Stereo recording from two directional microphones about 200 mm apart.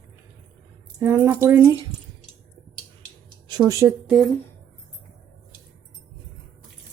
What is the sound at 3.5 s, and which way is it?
Speech, 20° right (ahead or behind).